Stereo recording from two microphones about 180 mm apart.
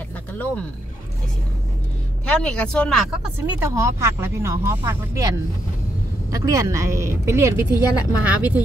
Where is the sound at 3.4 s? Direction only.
15° right (ahead or behind).